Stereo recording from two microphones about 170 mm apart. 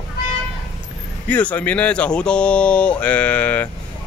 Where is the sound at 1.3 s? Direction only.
10° left (ahead or behind).